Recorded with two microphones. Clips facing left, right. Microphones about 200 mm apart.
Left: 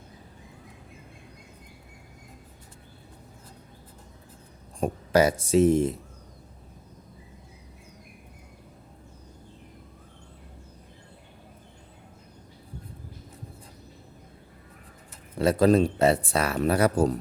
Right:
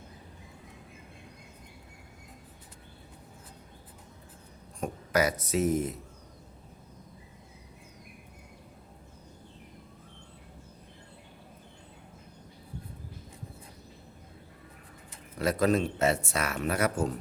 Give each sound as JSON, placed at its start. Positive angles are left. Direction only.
{"t": 4.8, "sound": "speech", "side_deg": 30}
{"t": 15.4, "sound": "speech", "side_deg": 30}